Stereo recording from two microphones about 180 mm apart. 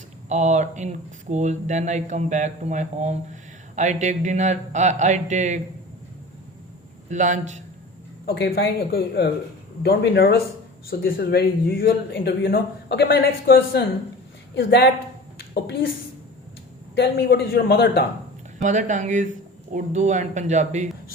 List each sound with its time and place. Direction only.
0.3 s speech: 40° right (ahead or behind)
7.1 s speech: 45° right (ahead or behind)
8.3 s a woman's voice: 60° left (ahead or behind)
16.9 s speech: 70° left (ahead or behind)
18.6 s speech: 45° right (ahead or behind)